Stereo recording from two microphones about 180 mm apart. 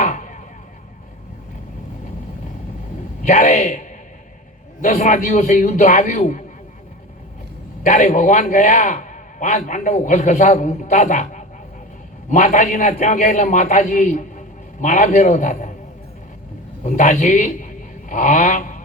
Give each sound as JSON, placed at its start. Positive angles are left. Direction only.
{"t": 0.0, "sound": "chop", "side_deg": 45}
{"t": 3.2, "sound": "a man's voice", "side_deg": 45}
{"t": 7.9, "sound": "a man's voice", "side_deg": 45}
{"t": 16.8, "sound": "a man's voice", "side_deg": 45}